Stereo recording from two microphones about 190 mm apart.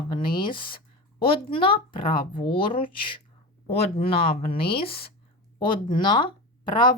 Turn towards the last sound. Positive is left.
turn(degrees=25)  # may be behind; listen again after turning